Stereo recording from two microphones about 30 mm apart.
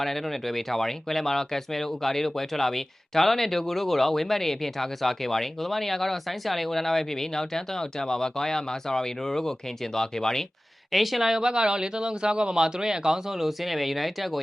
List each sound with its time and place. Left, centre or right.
0.0 s speech: centre
10.9 s speech: centre
11.3 s speech: right; by 14.4 s centre